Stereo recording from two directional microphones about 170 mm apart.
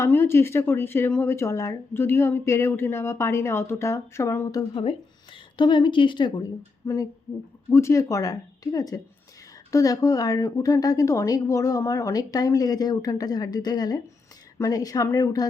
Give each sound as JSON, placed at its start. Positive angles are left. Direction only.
{"t": 0.0, "sound": "speech", "side_deg": 15}
{"t": 4.8, "sound": "a woman's voice", "side_deg": 30}